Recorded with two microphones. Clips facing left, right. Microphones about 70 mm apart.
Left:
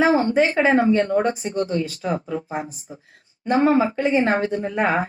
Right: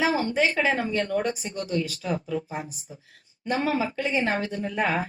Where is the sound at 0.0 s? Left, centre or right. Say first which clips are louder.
Left 6 dB; left.